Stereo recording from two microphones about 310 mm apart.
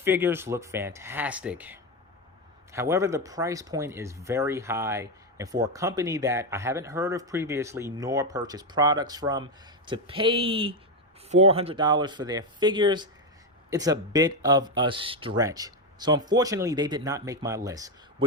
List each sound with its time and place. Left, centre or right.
0.0 s speech: centre